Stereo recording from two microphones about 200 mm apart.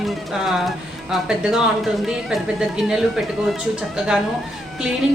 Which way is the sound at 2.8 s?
5° right (ahead or behind).